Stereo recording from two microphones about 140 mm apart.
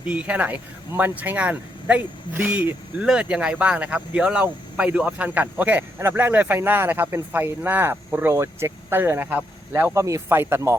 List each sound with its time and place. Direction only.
0.0 s speech: 10° right (ahead or behind)